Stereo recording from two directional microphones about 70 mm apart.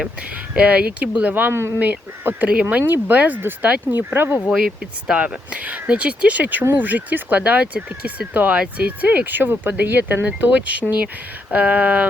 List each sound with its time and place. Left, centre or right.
0.5 s speech: centre; by 1.8 s right
1.8 s speech: right
5.0 s speech: centre